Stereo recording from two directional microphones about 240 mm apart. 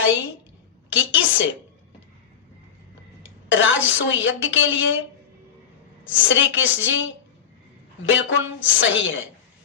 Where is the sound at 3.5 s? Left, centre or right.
Left.